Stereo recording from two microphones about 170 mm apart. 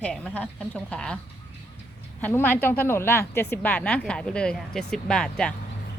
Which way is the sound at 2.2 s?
10° left (ahead or behind).